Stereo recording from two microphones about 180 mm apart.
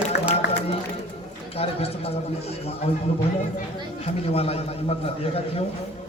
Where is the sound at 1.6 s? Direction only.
35° left (ahead or behind).